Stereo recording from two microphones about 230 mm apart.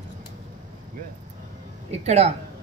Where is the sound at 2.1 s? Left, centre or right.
Right.